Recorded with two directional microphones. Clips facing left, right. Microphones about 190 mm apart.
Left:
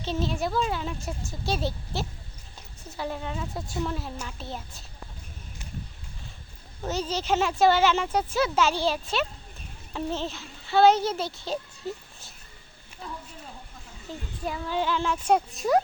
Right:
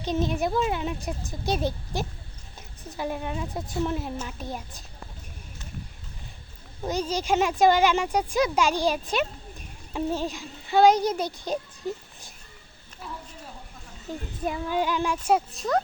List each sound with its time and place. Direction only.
0.0 s speech: 15° right (ahead or behind)
6.8 s speech: 10° right (ahead or behind)
14.1 s a child's voice: 15° right (ahead or behind)
15.6 s speech: centre (ahead or behind)